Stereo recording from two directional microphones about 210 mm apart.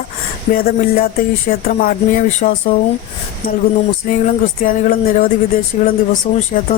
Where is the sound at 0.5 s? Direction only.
45° left (ahead or behind).